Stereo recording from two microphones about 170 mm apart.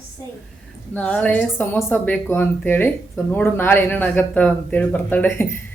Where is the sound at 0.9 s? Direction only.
5° left (ahead or behind).